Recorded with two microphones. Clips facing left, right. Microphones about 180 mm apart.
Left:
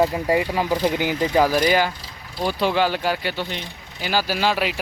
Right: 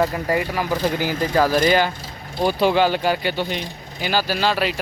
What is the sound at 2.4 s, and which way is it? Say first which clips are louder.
Speech: right 3 dB; centre (ahead or behind).